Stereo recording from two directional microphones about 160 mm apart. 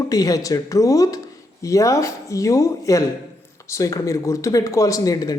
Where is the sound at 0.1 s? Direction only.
20° left (ahead or behind).